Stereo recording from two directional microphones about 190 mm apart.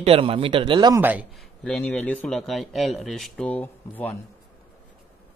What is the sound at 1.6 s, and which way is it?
A man's voice, 5° left (ahead or behind).